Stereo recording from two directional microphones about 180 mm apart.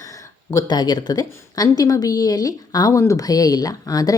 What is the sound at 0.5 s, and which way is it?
A woman's voice, 20° left (ahead or behind).